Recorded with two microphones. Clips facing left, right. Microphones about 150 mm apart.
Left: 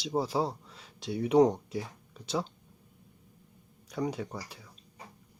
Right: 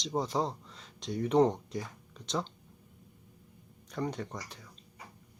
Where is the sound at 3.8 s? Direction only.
5° left (ahead or behind).